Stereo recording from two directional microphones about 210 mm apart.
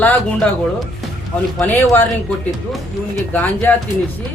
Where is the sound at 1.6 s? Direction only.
10° left (ahead or behind).